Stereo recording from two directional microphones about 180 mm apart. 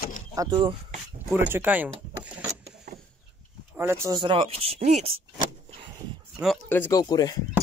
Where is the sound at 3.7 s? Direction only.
15° right (ahead or behind); by 5.1 s 35° right (ahead or behind).